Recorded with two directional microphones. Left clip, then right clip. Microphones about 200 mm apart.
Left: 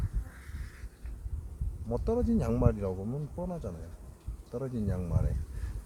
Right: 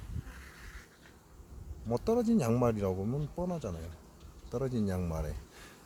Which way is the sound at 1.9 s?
50° right (ahead or behind).